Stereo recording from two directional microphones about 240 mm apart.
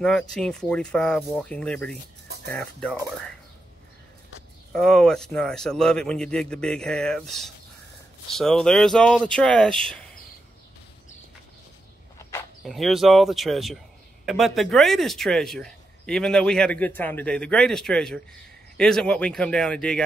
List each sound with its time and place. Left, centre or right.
0.0 s speech: centre
4.7 s speech: centre
12.2 s a sound: centre
12.6 s speech: centre